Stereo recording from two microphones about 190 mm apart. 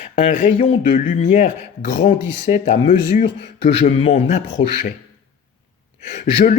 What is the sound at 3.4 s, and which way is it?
Speech, 30° left (ahead or behind).